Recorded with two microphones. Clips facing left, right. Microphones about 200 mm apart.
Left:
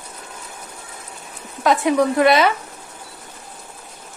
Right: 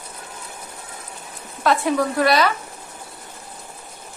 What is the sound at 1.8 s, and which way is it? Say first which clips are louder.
Speech: left 7 dB; 20° left (ahead or behind).